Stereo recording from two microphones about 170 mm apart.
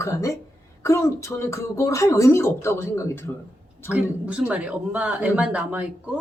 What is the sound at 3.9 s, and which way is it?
A man's voice, 5° right (ahead or behind).